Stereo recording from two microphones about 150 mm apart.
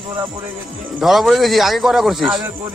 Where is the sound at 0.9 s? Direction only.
Centre (ahead or behind).